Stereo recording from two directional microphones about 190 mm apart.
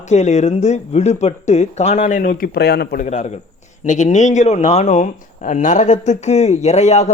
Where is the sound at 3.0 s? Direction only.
40° left (ahead or behind).